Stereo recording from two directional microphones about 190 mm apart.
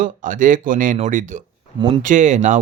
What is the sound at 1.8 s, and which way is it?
Speech, 25° right (ahead or behind).